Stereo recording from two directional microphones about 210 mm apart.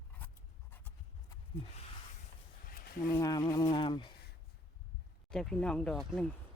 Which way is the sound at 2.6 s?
45° left (ahead or behind).